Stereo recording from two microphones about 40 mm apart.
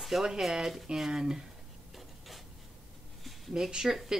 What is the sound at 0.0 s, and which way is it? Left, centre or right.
A woman's voice, centre.